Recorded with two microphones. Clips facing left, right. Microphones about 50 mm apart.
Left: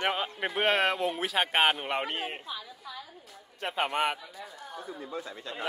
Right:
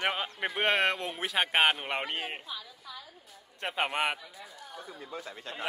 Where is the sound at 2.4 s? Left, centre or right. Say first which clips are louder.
Left 3 dB; centre.